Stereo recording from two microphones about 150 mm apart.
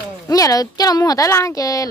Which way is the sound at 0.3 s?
25° left (ahead or behind).